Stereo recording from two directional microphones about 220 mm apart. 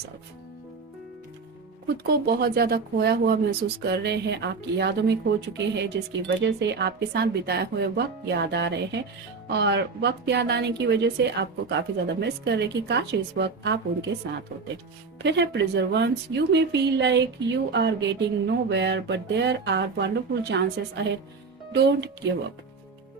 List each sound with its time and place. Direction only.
2.0 s a woman's voice: 45° right (ahead or behind)
15.2 s a woman's voice: 50° right (ahead or behind)